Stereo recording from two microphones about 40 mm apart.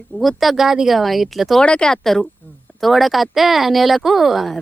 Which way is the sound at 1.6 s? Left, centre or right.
Left.